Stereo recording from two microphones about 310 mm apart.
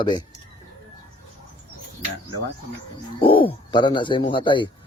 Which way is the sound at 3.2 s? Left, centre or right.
Centre.